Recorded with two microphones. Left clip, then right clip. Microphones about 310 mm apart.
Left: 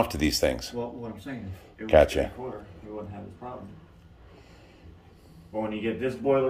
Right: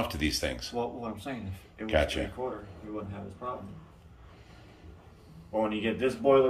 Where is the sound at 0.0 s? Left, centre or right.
Centre.